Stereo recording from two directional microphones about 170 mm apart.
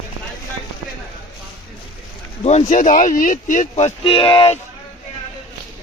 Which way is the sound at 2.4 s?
45° left (ahead or behind).